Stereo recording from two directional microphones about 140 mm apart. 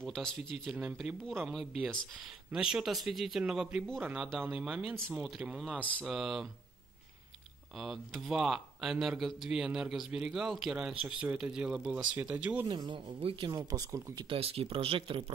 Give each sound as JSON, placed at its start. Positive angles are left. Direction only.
{"t": 0.0, "sound": "speech", "side_deg": 5}
{"t": 0.7, "sound": "speech", "side_deg": -5}
{"t": 2.5, "sound": "speech", "side_deg": -5}
{"t": 5.7, "sound": "a sound", "side_deg": 10}
{"t": 6.0, "sound": "speech", "side_deg": 0}
{"t": 7.7, "sound": "speech", "side_deg": 0}
{"t": 12.6, "sound": "speech", "side_deg": -30}
{"t": 13.2, "sound": "speech", "side_deg": -40}
{"t": 13.5, "sound": "speech", "side_deg": -25}
{"t": 14.3, "sound": "speech", "side_deg": -45}